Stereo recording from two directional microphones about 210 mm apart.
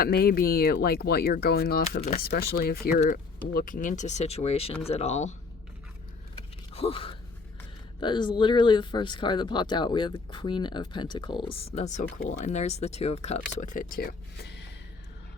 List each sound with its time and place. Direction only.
0.0 s speech: 45° left (ahead or behind)
2.0 s speech: 30° left (ahead or behind)
2.2 s speech: 45° left (ahead or behind); by 5.3 s 30° left (ahead or behind)
6.3 s a sound: 25° left (ahead or behind)
8.0 s speech: 20° left (ahead or behind); by 14.7 s 50° left (ahead or behind)